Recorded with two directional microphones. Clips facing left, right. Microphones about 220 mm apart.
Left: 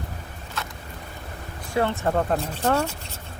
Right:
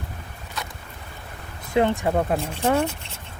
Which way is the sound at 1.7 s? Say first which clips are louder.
Right 3 dB; 15° right (ahead or behind).